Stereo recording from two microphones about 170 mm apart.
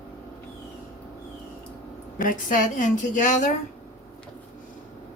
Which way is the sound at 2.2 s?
50° left (ahead or behind).